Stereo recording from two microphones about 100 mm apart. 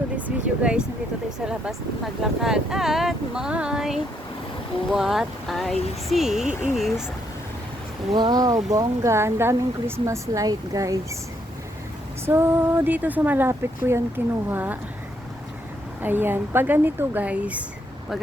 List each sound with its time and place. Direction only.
0.2 s a sound: 15° right (ahead or behind)
2.4 s speech: 5° right (ahead or behind)
8.1 s speech: 45° right (ahead or behind)
12.2 s a woman's voice: 25° right (ahead or behind)
16.0 s speech: 20° right (ahead or behind)